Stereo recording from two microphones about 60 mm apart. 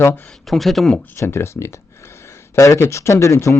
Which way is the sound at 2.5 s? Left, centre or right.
Left.